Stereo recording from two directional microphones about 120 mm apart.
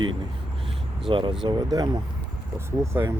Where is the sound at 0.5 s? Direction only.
50° right (ahead or behind).